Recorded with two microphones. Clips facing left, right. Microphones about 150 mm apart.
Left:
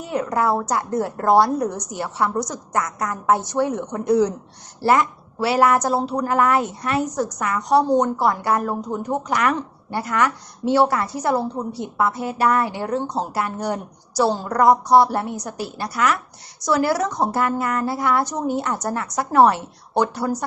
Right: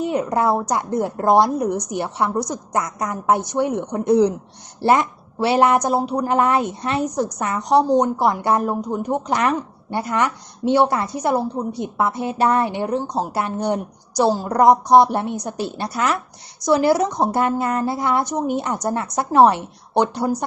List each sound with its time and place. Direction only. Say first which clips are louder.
0.0 s a woman's voice: right 2 dB; 20° right (ahead or behind)